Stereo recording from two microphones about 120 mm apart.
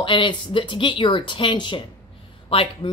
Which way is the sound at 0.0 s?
45° left (ahead or behind).